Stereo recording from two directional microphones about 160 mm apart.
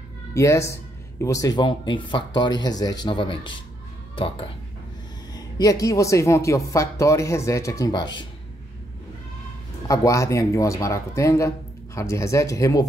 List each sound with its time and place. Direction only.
0.3 s speech: 20° left (ahead or behind)
5.3 s speech: 25° left (ahead or behind)
9.8 s speech: 20° left (ahead or behind)